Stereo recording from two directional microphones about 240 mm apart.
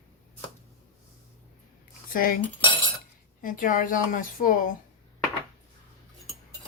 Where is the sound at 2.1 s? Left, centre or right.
Left.